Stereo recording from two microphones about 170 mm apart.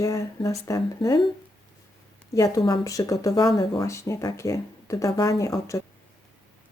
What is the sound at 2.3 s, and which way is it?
Speech, 20° left (ahead or behind).